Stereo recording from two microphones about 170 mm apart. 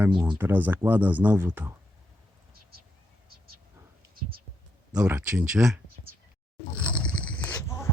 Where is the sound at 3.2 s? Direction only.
65° right (ahead or behind).